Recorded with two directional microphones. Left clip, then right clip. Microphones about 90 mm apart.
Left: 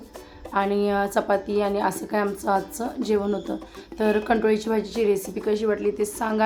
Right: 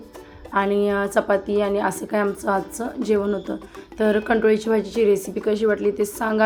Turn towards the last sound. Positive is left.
turn(degrees=-30)  # may be behind; listen again after turning